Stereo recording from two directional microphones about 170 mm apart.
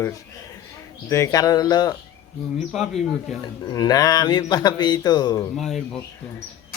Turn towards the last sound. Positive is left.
turn(degrees=0)  # may be behind; listen again after turning